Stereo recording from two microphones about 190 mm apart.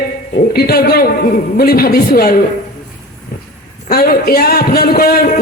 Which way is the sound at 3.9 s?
50° left (ahead or behind).